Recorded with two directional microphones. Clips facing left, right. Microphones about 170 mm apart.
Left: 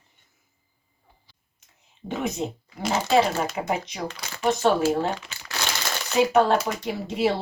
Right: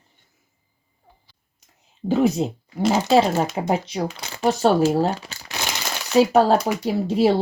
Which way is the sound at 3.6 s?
30° right (ahead or behind).